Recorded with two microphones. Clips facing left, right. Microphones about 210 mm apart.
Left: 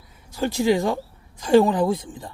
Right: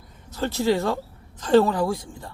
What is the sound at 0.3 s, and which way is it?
A woman's voice, 15° left (ahead or behind).